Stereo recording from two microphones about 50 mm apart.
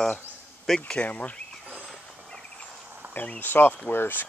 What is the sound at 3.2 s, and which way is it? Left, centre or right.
Speech, left.